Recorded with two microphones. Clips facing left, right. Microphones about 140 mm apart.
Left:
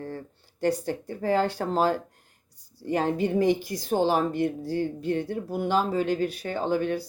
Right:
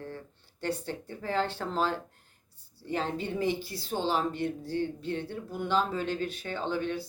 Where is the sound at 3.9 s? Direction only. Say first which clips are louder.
Left 6 dB; 50° left (ahead or behind).